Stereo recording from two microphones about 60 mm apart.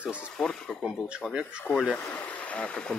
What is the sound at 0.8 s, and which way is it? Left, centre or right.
Speech, centre.